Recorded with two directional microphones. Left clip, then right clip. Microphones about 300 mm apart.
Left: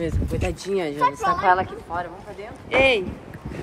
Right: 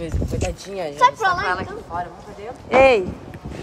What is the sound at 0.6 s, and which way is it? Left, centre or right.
Speech, left.